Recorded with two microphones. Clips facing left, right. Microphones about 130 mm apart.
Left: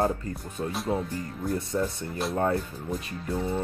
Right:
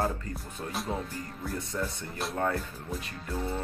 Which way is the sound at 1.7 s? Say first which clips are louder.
Left 6 dB; 20° left (ahead or behind).